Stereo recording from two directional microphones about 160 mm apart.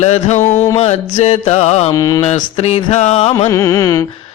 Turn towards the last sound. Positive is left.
turn(degrees=20)  # may be behind; listen again after turning